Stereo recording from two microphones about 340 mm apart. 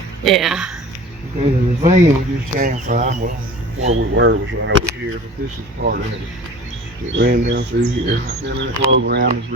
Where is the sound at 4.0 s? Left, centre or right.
Right.